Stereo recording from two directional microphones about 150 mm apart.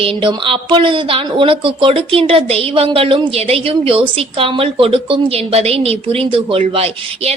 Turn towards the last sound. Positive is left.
turn(degrees=-40)  # may be behind; listen again after turning